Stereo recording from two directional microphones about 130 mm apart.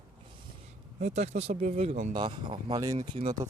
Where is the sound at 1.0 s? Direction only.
60° right (ahead or behind).